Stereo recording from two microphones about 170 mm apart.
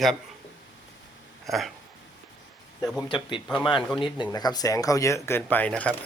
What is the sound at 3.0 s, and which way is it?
Speech, 30° left (ahead or behind).